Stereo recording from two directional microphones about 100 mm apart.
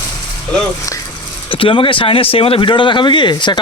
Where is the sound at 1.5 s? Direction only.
60° left (ahead or behind).